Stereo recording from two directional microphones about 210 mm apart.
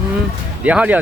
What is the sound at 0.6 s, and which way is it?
Speech, 5° right (ahead or behind).